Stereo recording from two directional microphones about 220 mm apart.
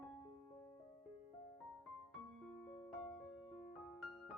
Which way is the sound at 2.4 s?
Centre (ahead or behind).